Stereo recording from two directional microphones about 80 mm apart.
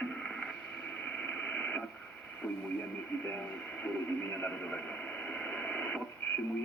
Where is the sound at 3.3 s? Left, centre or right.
Left.